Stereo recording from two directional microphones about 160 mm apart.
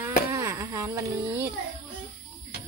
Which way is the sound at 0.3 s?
20° right (ahead or behind).